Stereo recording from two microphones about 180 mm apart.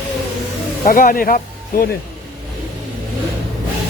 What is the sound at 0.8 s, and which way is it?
Speech, 50° left (ahead or behind).